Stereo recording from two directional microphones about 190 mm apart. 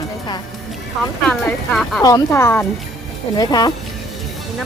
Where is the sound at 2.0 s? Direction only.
20° left (ahead or behind).